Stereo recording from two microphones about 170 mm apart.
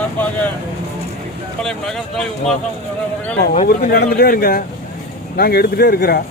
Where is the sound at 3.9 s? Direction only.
65° left (ahead or behind).